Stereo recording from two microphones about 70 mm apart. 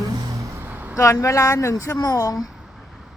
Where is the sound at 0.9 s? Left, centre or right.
Left.